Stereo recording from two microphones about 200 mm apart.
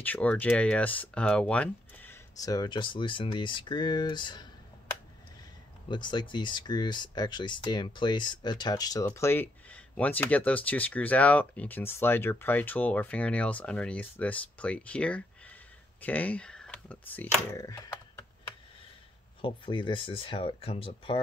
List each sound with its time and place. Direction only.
0.0 s speech: 10° left (ahead or behind)
5.9 s speech: 20° left (ahead or behind)
19.4 s speech: 25° left (ahead or behind)